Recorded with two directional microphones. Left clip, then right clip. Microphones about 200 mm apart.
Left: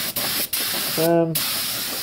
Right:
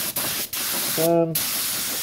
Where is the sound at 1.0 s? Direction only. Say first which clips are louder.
Left 1 dB; centre (ahead or behind).